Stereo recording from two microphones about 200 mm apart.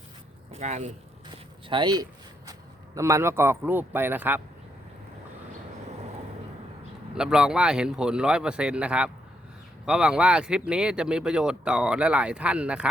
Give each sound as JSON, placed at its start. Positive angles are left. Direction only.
{"t": 0.5, "sound": "speech", "side_deg": -35}
{"t": 1.7, "sound": "speech", "side_deg": -20}
{"t": 7.2, "sound": "speech", "side_deg": -5}